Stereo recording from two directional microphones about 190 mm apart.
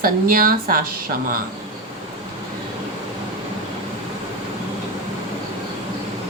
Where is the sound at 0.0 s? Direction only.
50° right (ahead or behind).